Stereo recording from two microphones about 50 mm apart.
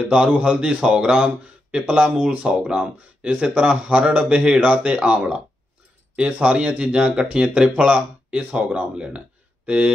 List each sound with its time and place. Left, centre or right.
0.1 s speech: right